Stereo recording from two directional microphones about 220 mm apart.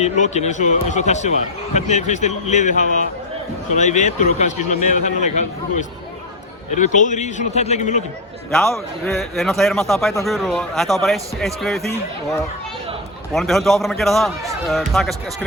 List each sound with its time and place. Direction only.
0.0 s a man's voice: 30° left (ahead or behind)
8.5 s a man's voice: centre (ahead or behind)
13.3 s a man's voice: centre (ahead or behind)